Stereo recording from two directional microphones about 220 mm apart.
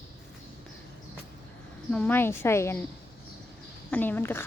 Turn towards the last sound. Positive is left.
turn(degrees=10)  # may be behind; listen again after turning